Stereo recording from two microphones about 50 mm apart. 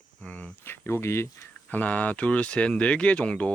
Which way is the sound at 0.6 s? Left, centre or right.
Left.